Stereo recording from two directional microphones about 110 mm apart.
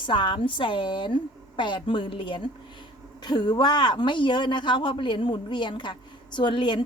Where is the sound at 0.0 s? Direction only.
45° left (ahead or behind).